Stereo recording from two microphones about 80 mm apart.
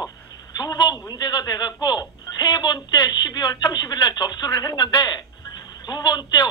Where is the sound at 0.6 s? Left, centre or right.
Left.